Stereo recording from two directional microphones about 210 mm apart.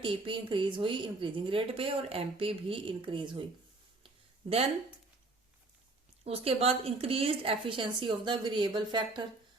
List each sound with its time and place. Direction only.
0.0 s a woman's voice: 25° right (ahead or behind)
4.0 s a sound: 30° right (ahead or behind)
6.2 s a woman's voice: 30° right (ahead or behind)